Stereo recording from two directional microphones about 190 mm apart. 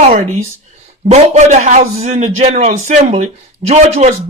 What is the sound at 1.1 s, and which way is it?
A man's voice, 35° right (ahead or behind).